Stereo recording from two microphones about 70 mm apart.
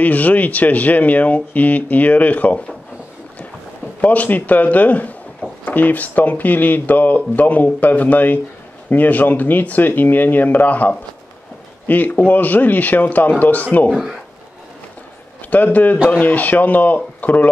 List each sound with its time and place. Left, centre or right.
0.0 s speech: left
4.0 s speech: left
15.5 s speech: left